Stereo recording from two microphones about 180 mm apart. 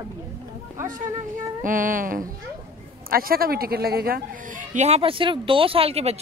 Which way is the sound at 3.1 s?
55° right (ahead or behind).